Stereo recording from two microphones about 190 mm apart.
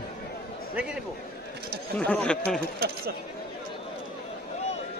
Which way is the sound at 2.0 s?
5° left (ahead or behind).